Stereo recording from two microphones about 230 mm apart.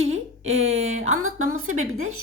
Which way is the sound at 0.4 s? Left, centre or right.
Right.